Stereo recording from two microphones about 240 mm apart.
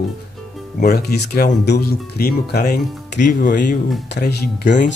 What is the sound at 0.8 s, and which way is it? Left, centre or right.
Speech, left.